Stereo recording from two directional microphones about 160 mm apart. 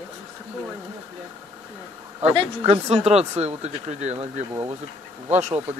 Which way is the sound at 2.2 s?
40° right (ahead or behind).